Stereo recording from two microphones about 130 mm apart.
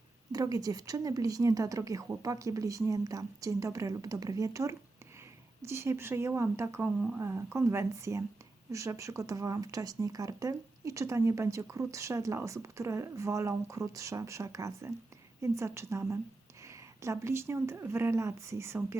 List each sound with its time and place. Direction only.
0.3 s speech: 30° right (ahead or behind)